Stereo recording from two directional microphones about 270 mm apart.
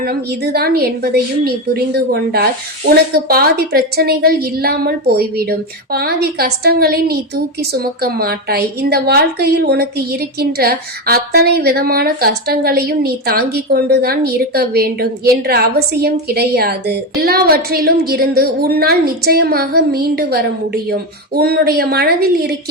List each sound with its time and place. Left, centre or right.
0.0 s a woman's voice: right